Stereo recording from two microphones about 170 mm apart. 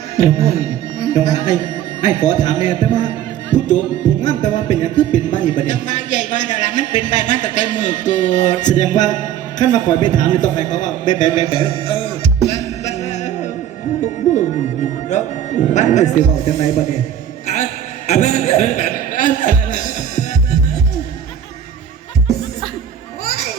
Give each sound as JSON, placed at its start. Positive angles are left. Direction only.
{"t": 0.2, "sound": "a man's voice", "side_deg": 45}
{"t": 11.5, "sound": "music", "side_deg": 30}
{"t": 15.1, "sound": "a man's voice", "side_deg": 45}
{"t": 17.4, "sound": "a sound", "side_deg": 40}